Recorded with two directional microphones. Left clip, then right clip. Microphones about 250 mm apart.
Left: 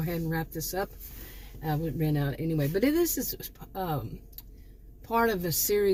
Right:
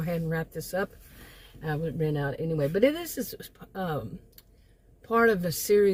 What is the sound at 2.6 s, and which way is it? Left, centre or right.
Speech, centre.